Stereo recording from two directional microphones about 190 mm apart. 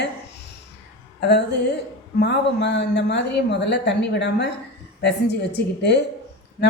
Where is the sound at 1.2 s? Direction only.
60° left (ahead or behind).